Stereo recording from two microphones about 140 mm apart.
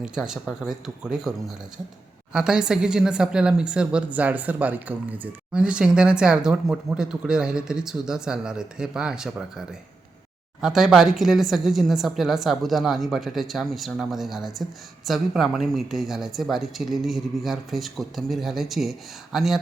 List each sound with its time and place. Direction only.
0.0 s a woman's voice: 5° right (ahead or behind)
2.3 s a woman's voice: 5° right (ahead or behind)